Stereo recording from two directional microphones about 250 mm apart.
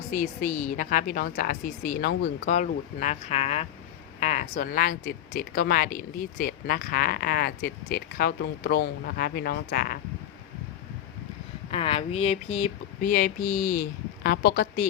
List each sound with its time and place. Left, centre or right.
0.1 s speech: left
11.7 s a sound: left
14.3 s speech: left